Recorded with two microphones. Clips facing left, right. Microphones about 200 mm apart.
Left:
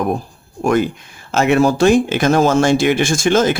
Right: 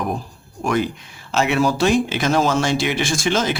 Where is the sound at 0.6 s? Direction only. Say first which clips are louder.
Left 5 dB; 50° left (ahead or behind).